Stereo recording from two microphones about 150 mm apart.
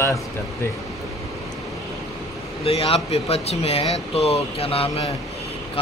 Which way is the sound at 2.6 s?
40° left (ahead or behind).